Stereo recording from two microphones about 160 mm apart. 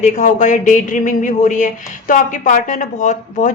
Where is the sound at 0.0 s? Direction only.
50° left (ahead or behind).